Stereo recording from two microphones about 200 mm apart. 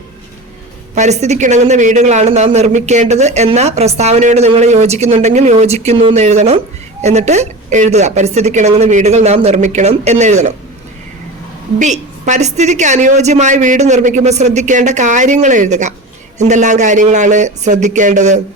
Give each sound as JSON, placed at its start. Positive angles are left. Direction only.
{"t": 0.9, "sound": "speech", "side_deg": -35}
{"t": 11.8, "sound": "speech", "side_deg": -35}